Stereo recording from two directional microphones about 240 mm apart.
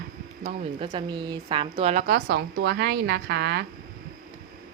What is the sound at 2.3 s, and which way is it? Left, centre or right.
A woman's voice, right.